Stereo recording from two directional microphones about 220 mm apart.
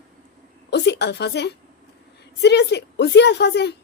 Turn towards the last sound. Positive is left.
turn(degrees=50)  # may be behind; listen again after turning